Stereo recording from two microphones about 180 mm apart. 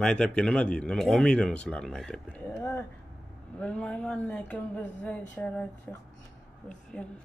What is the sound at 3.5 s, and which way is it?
Speech, 5° left (ahead or behind).